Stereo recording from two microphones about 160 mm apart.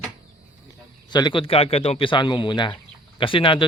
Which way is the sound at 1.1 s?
30° left (ahead or behind).